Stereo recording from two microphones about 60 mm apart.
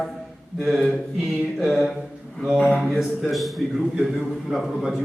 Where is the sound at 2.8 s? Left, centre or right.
Centre.